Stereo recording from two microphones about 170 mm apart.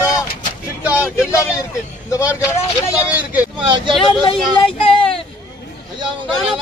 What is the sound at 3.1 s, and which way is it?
Speech, 10° right (ahead or behind).